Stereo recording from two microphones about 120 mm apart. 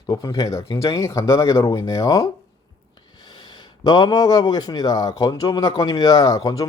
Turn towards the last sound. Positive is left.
turn(degrees=30)  # may be behind; listen again after turning